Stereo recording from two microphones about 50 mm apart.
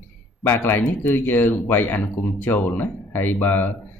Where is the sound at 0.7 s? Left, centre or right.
Left.